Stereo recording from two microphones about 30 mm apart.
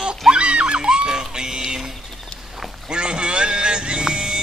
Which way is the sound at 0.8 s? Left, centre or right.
Right.